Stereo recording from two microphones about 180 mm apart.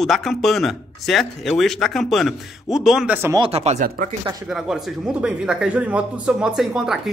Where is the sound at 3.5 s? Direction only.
35° right (ahead or behind).